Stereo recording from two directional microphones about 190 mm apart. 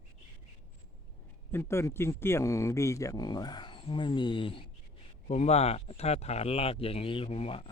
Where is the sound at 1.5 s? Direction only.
10° left (ahead or behind).